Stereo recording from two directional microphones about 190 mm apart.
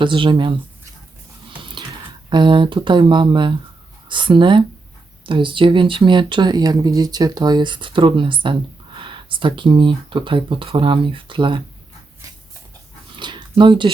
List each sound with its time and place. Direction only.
0.0 s speech: 25° right (ahead or behind)
2.3 s speech: 25° right (ahead or behind)
13.1 s a sound: 25° right (ahead or behind)